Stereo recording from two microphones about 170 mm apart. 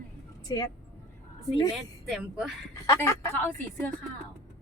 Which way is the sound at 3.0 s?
15° left (ahead or behind).